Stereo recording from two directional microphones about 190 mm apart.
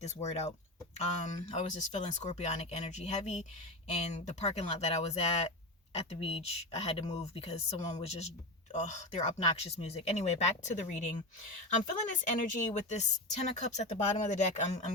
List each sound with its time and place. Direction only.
0.0 s speech: 35° left (ahead or behind)